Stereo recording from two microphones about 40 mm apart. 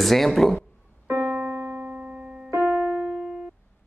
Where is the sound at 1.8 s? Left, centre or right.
Right.